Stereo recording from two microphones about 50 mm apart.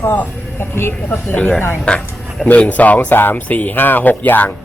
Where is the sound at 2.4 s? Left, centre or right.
Left.